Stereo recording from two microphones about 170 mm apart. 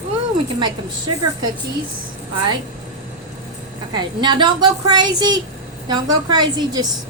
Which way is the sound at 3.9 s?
25° right (ahead or behind).